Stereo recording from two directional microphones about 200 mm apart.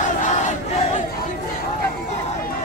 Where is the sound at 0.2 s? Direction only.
35° left (ahead or behind).